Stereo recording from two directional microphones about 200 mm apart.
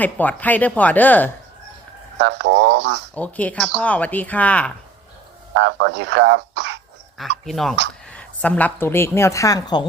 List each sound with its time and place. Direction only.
0.0 s speech: 10° left (ahead or behind)
2.1 s speech: 65° right (ahead or behind)
3.2 s speech: 5° left (ahead or behind)
5.5 s speech: 65° right (ahead or behind)
7.4 s a woman's voice: centre (ahead or behind); by 9.8 s 20° left (ahead or behind)